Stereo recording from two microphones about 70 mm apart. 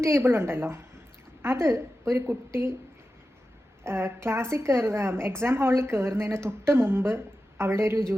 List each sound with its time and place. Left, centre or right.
0.0 s a woman's voice: right
3.8 s a woman's voice: right